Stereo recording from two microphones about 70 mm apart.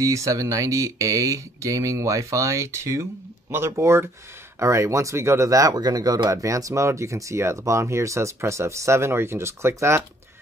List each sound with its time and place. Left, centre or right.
0.0 s speech: right
6.3 s speech: right